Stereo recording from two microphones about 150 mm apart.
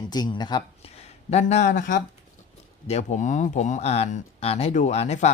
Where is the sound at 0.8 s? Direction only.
45° left (ahead or behind).